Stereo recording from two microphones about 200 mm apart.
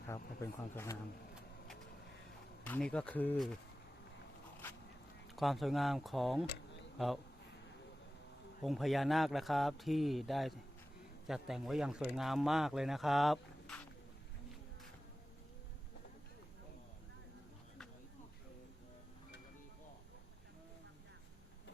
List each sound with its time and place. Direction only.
0.4 s speech: 15° left (ahead or behind)
2.6 s speech: 5° left (ahead or behind)
5.4 s speech: centre (ahead or behind)
8.6 s speech: centre (ahead or behind)